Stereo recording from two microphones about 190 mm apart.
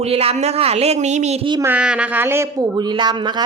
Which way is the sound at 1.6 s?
5° right (ahead or behind).